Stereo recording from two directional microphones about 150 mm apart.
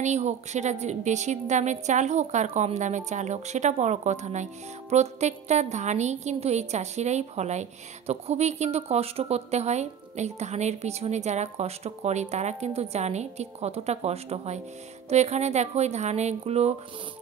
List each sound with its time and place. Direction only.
0.0 s a woman's voice: 50° right (ahead or behind)